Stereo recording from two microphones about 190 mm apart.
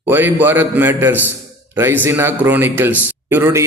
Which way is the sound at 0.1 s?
10° right (ahead or behind).